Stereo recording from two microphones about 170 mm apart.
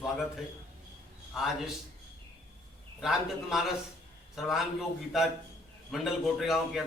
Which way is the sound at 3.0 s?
Centre (ahead or behind).